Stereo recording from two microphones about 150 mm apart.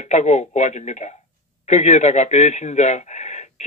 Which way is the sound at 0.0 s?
50° left (ahead or behind).